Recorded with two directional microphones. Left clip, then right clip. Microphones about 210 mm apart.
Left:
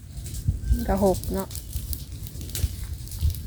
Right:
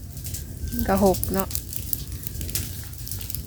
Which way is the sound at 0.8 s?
10° right (ahead or behind).